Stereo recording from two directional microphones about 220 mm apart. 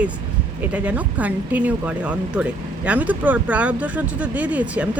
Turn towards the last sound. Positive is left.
turn(degrees=-5)  # may be behind; listen again after turning